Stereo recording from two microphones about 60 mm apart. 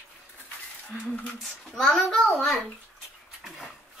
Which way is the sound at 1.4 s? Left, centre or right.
Centre.